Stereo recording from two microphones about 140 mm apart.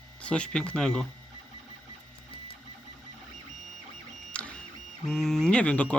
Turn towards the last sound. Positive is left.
turn(degrees=10)  # may be behind; listen again after turning